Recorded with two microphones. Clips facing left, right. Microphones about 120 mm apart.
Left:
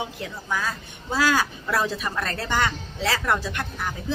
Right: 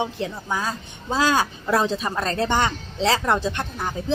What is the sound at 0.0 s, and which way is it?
A woman's voice, 25° right (ahead or behind).